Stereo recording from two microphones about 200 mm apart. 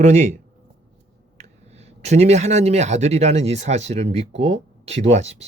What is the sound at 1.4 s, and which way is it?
A man's voice, 35° right (ahead or behind).